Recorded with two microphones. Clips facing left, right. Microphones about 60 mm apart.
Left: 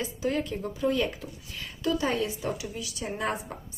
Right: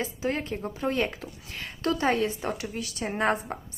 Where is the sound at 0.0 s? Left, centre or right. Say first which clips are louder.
Even; right.